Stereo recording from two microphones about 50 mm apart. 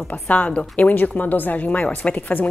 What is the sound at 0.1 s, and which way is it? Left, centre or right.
A woman's voice, left.